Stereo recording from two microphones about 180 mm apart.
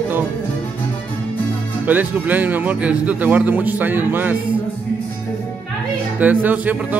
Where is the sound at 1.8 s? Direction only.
10° right (ahead or behind).